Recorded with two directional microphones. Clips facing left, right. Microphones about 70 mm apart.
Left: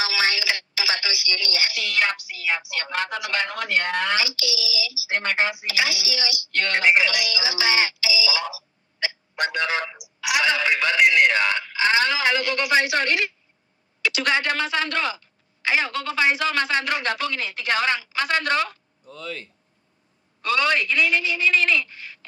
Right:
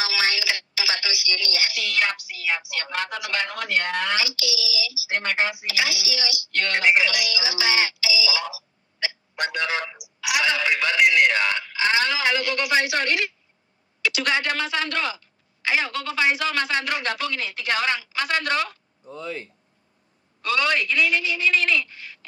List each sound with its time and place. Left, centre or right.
0.0 s telephone: left
14.0 s a man's voice: left
19.0 s speech: right
20.4 s a man's voice: left